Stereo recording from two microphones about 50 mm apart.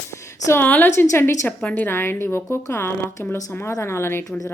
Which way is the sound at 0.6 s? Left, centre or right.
Left.